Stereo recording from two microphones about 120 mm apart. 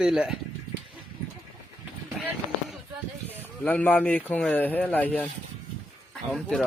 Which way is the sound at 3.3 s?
15° left (ahead or behind).